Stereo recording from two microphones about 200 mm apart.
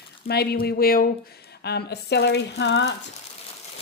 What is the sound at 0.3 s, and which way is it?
Speech, 50° left (ahead or behind).